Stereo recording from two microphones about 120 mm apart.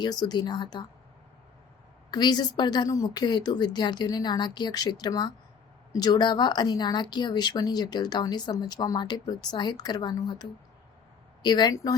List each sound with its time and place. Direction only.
0.0 s speech: 35° left (ahead or behind)
2.0 s speech: 35° left (ahead or behind)